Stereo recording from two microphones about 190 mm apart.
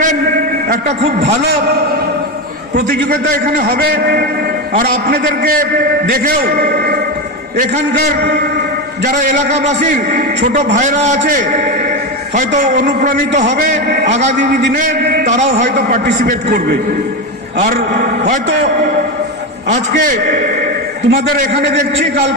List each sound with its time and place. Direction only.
0.7 s a man's voice: 35° right (ahead or behind)
3.3 s a man's voice: 45° right (ahead or behind)
13.8 s a man's voice: 60° right (ahead or behind)
21.1 s a man's voice: 55° right (ahead or behind)